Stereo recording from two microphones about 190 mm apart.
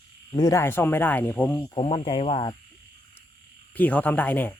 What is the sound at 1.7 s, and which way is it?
Speech, 30° left (ahead or behind).